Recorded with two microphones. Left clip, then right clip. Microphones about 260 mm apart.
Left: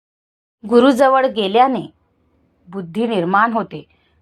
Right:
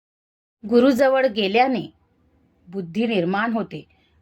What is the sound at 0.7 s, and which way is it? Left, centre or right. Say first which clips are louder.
A woman's voice: left 5 dB; centre.